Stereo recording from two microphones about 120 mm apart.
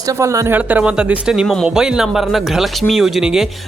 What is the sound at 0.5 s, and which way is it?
Speech, 10° right (ahead or behind).